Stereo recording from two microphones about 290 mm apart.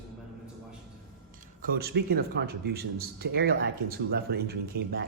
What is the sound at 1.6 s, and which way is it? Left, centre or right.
Speech, right.